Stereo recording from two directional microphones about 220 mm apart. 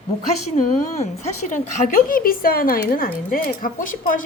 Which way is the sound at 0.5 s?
30° left (ahead or behind).